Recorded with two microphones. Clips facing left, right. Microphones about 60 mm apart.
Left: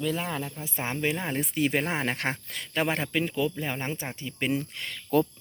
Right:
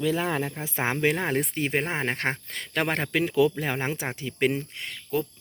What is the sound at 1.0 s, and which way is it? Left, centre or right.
Speech, right.